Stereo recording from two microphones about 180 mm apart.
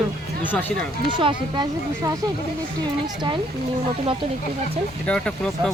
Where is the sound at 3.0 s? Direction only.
25° right (ahead or behind).